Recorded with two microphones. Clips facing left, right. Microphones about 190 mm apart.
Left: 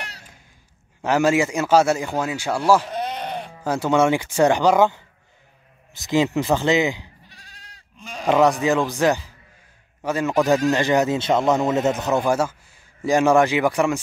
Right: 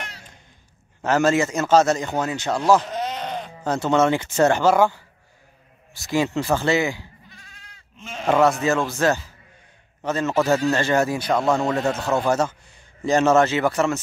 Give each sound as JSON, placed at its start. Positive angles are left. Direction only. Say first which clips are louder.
{"t": 1.0, "sound": "a man's voice", "louder": "left 1 dB", "side_deg": 10}
{"t": 7.2, "sound": "goat", "louder": "right 1 dB", "side_deg": 35}
{"t": 8.3, "sound": "a man's voice", "louder": "left 1 dB", "side_deg": 15}